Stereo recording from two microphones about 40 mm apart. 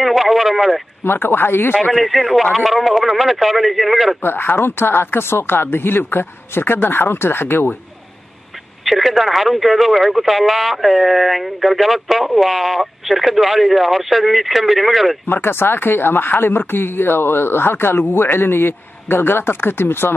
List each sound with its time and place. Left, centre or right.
0.0 s a sound: centre
1.0 s speech: left
2.0 s speech: centre
4.2 s speech: left
8.8 s speech: centre
15.2 s speech: left